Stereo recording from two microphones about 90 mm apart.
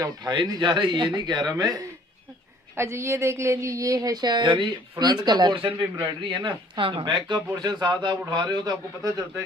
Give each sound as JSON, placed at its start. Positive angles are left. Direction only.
{"t": 0.3, "sound": "a man's voice", "side_deg": -60}
{"t": 2.8, "sound": "speech", "side_deg": -30}